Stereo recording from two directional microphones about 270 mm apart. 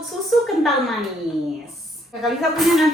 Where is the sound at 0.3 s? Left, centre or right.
Centre.